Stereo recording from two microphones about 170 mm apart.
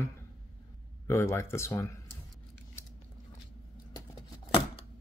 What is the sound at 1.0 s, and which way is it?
Speech, 15° left (ahead or behind).